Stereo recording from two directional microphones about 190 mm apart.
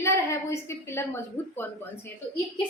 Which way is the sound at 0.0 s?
15° left (ahead or behind).